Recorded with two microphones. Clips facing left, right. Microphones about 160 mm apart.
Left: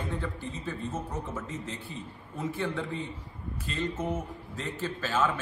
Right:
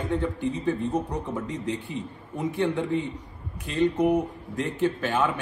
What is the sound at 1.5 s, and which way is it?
Speech, 75° right (ahead or behind).